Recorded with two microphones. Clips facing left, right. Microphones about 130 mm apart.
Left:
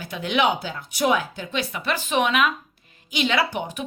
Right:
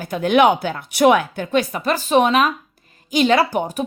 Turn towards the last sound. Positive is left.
turn(degrees=-40)  # may be behind; listen again after turning